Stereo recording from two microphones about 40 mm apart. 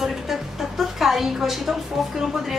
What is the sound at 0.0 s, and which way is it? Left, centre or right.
A woman's voice, centre.